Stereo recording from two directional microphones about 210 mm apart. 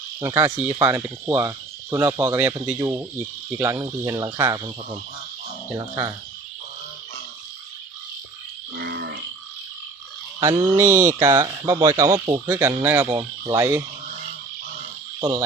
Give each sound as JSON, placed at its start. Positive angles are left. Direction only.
{"t": 0.2, "sound": "speech", "side_deg": -15}
{"t": 8.7, "sound": "livestock", "side_deg": -50}
{"t": 10.4, "sound": "speech", "side_deg": -15}
{"t": 15.2, "sound": "speech", "side_deg": -15}